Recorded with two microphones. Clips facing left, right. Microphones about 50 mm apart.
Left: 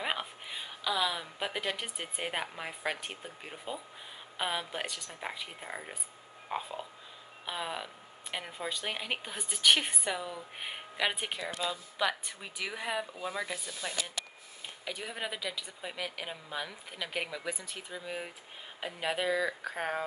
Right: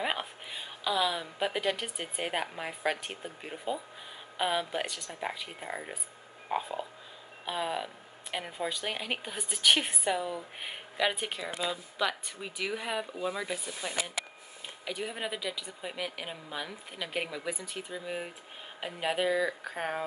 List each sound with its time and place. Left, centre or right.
0.0 s a woman's voice: centre
11.5 s speech: centre
12.0 s speech: centre